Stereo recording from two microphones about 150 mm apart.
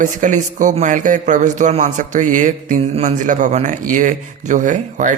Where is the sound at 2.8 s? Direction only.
50° right (ahead or behind).